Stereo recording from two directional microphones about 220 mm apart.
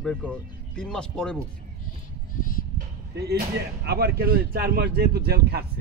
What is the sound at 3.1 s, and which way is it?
Speech, 45° right (ahead or behind).